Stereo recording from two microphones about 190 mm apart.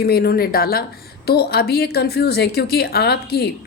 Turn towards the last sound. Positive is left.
turn(degrees=60)  # may be behind; listen again after turning